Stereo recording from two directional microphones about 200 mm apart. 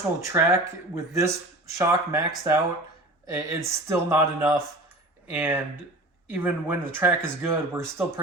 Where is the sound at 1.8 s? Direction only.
15° right (ahead or behind).